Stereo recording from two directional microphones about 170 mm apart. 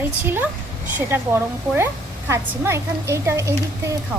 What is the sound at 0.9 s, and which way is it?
A woman's voice, 15° right (ahead or behind).